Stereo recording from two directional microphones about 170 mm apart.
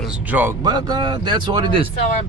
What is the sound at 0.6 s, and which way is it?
Speech, 25° right (ahead or behind).